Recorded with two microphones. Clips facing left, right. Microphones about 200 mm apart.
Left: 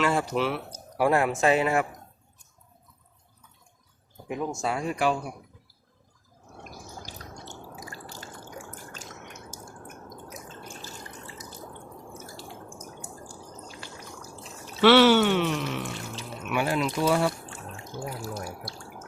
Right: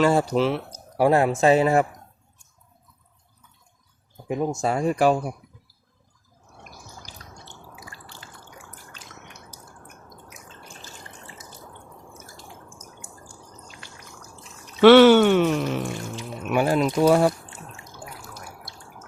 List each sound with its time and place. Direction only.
0.0 s speech: 35° right (ahead or behind)
4.3 s speech: 40° right (ahead or behind)
7.4 s drip: 40° left (ahead or behind)
12.8 s drip: 35° left (ahead or behind)
14.8 s speech: 50° right (ahead or behind)
17.9 s water tap: 25° left (ahead or behind)